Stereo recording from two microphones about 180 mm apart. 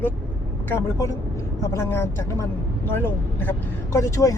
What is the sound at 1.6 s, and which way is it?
Speech, 15° left (ahead or behind).